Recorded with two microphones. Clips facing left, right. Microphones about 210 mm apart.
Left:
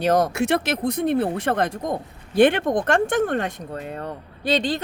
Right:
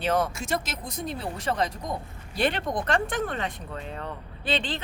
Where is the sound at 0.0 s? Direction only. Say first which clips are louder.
Left 6 dB; 40° left (ahead or behind).